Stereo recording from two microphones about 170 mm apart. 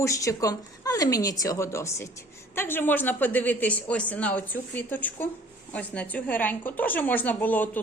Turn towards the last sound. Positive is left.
turn(degrees=10)  # may be behind; listen again after turning